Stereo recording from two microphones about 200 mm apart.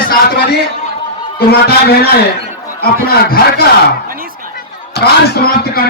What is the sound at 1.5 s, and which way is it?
A man's voice, 50° left (ahead or behind).